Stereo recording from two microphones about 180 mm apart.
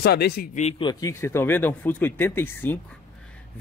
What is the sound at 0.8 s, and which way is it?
Speech, 20° left (ahead or behind).